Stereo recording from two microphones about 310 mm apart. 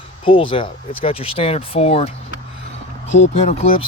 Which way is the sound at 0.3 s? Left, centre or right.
Centre.